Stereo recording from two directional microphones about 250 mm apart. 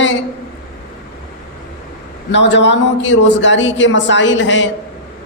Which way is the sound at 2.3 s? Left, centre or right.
Left.